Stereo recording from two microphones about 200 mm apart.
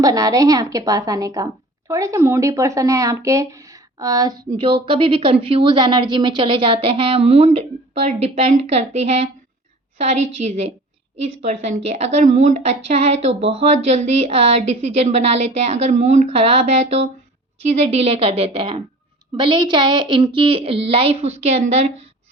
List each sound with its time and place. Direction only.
0.0 s a woman's voice: 15° right (ahead or behind)